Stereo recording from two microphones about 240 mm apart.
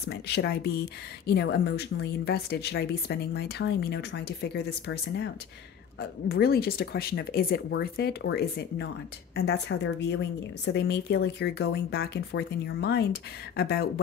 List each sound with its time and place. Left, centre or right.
0.1 s speech: left